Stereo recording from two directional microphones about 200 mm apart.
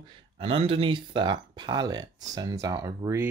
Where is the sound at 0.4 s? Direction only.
30° right (ahead or behind).